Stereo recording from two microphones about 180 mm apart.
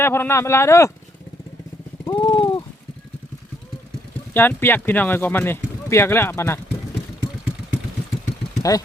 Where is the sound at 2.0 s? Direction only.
25° left (ahead or behind).